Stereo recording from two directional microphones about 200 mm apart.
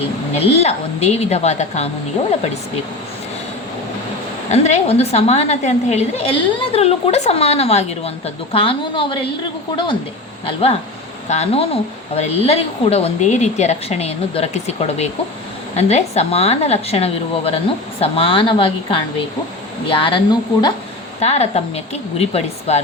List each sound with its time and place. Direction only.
0.3 s a woman's voice: 30° left (ahead or behind)
4.4 s a woman's voice: 35° left (ahead or behind)
10.4 s a woman's voice: 30° left (ahead or behind)